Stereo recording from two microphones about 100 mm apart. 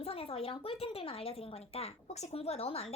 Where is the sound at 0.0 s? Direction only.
75° left (ahead or behind).